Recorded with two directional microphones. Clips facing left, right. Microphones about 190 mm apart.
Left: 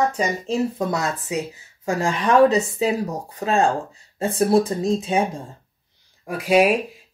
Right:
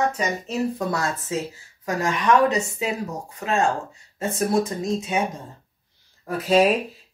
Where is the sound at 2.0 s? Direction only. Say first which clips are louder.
Left 3 dB; 35° left (ahead or behind).